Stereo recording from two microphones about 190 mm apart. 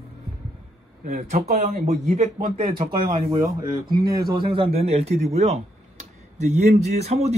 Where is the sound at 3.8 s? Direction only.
50° right (ahead or behind).